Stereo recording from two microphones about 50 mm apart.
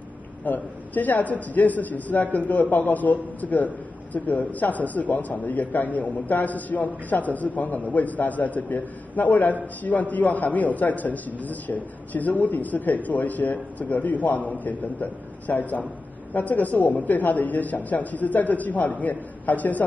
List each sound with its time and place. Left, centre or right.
0.5 s a man's voice: left